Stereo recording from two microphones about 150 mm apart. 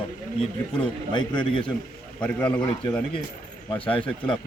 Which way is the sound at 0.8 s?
30° left (ahead or behind).